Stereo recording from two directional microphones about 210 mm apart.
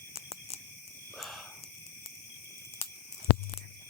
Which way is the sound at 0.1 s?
30° left (ahead or behind).